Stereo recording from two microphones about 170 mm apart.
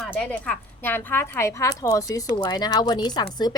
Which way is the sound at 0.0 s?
5° left (ahead or behind).